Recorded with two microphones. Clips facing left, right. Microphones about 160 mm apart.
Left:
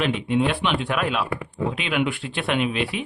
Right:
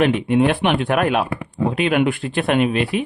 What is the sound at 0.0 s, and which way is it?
Speech, 55° right (ahead or behind).